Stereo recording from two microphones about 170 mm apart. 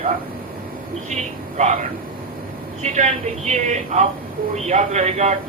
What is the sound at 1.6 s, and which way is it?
Speech, 45° right (ahead or behind).